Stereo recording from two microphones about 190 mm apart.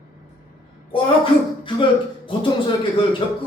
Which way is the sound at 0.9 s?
30° left (ahead or behind).